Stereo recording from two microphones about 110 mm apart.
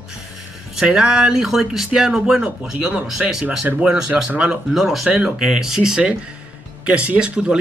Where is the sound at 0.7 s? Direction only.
5° right (ahead or behind).